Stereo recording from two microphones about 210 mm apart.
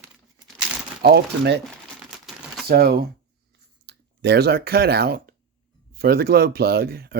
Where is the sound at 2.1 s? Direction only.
Centre (ahead or behind).